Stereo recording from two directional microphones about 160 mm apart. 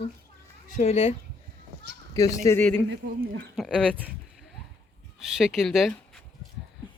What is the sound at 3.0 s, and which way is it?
Speech, 65° right (ahead or behind).